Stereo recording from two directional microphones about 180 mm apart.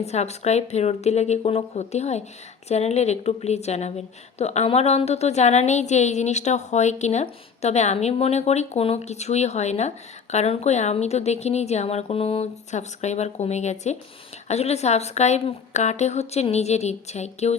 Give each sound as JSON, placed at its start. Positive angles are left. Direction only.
{"t": 0.0, "sound": "a woman's voice", "side_deg": 35}